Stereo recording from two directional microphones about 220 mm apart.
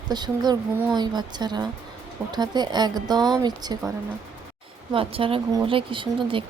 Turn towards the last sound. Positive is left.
turn(degrees=-25)  # may be behind; listen again after turning